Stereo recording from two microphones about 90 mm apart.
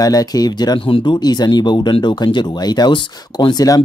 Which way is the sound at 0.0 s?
45° left (ahead or behind).